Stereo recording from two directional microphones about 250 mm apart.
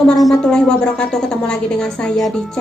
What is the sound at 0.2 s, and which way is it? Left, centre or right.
A woman's voice, centre.